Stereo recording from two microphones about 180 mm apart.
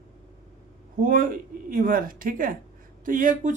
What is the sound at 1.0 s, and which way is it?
Speech, 50° right (ahead or behind).